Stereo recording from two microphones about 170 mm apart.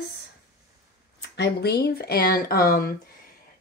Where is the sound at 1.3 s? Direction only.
85° left; by 2.9 s 60° left (ahead or behind).